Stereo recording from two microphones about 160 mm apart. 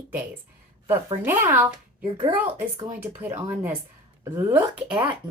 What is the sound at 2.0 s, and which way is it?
Speech, 30° right (ahead or behind).